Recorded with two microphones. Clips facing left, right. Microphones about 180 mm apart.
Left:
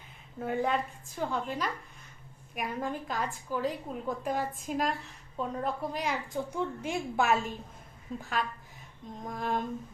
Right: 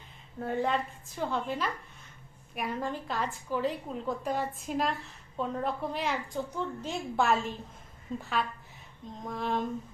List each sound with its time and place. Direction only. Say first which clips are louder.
0.3 s a woman's voice: even; 5° left (ahead or behind)
6.3 s a woman's voice: left 1 dB; 15° left (ahead or behind)
7.2 s a woman's voice: right 1 dB; centre (ahead or behind)